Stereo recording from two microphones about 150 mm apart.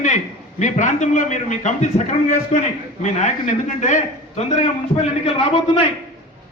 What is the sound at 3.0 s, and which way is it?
A man's voice, 55° left (ahead or behind).